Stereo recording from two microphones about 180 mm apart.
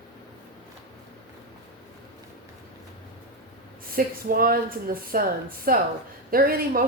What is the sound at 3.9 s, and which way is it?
Speech, 55° right (ahead or behind).